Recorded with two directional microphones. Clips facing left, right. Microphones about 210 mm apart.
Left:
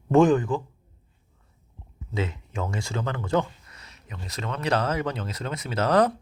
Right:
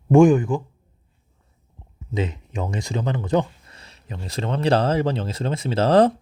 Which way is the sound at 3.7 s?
30° right (ahead or behind).